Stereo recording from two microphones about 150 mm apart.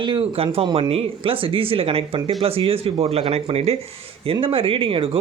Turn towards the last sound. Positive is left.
turn(degrees=-35)  # may be behind; listen again after turning